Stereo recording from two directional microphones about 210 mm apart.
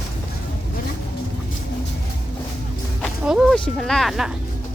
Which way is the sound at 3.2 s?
Centre (ahead or behind).